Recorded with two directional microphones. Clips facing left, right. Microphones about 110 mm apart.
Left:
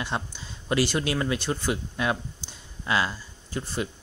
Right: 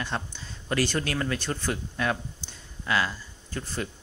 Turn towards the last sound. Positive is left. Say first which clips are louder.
# left 3 dB
turn(degrees=15)  # may be behind; listen again after turning